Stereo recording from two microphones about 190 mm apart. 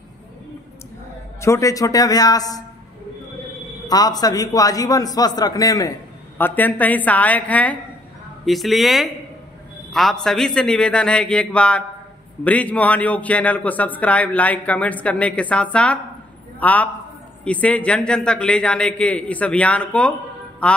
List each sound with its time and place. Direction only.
1.4 s a man's voice: 15° left (ahead or behind)
3.9 s a man's voice: 20° left (ahead or behind)